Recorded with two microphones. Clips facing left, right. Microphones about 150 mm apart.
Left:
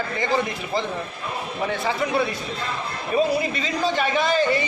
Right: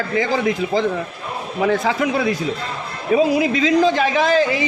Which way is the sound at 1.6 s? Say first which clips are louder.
Right 7 dB; 90° right.